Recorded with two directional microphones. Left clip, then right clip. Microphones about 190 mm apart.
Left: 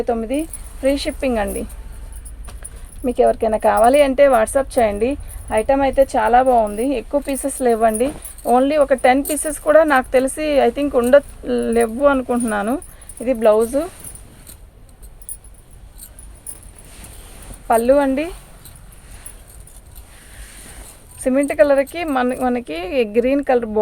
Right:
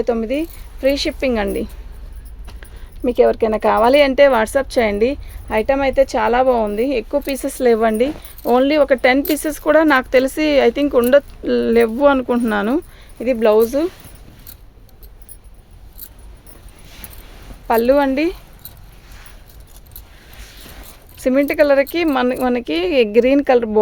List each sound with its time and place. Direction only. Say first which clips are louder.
0.0 s speech: right 2 dB; 60° right (ahead or behind)
3.0 s speech: right 1 dB; 45° right (ahead or behind)
17.7 s speech: even; 60° right (ahead or behind)
21.2 s speech: even; 55° right (ahead or behind)